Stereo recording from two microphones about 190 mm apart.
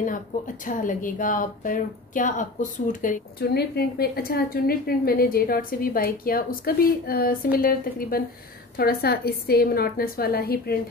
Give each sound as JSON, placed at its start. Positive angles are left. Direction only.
{"t": 0.3, "sound": "a woman's voice", "side_deg": 45}